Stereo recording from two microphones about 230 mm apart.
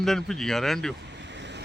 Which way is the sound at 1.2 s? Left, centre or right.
Right.